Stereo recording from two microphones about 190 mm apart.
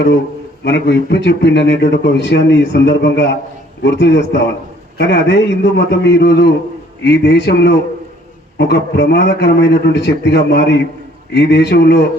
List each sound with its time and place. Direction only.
0.6 s a man's voice: 65° left (ahead or behind)